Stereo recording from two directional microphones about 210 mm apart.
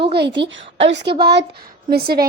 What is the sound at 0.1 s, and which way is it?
A woman's voice, 55° right (ahead or behind).